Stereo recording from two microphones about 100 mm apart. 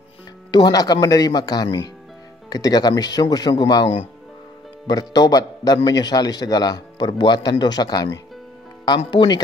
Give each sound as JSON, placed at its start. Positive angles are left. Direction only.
{"t": 0.5, "sound": "speech", "side_deg": 45}
{"t": 4.8, "sound": "speech", "side_deg": 40}